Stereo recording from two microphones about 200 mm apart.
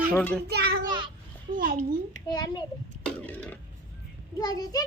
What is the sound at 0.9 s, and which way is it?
Babbling, 25° right (ahead or behind).